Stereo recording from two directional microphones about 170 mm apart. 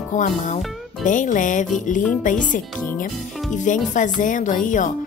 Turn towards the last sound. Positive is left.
turn(degrees=50)  # may be behind; listen again after turning